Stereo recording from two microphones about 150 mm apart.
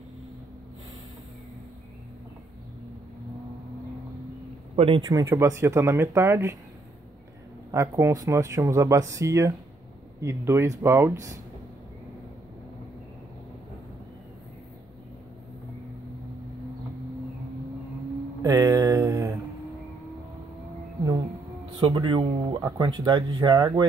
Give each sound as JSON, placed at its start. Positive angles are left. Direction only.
{"t": 4.7, "sound": "speech", "side_deg": -35}
{"t": 5.2, "sound": "speech", "side_deg": -20}
{"t": 7.7, "sound": "speech", "side_deg": -20}
{"t": 18.4, "sound": "mantra", "side_deg": -25}
{"t": 21.7, "sound": "speech", "side_deg": -35}